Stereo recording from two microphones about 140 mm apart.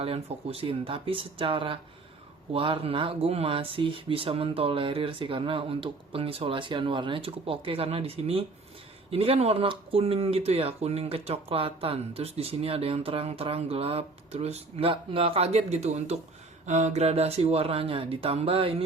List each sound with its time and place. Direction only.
0.0 s speech: 45° right (ahead or behind)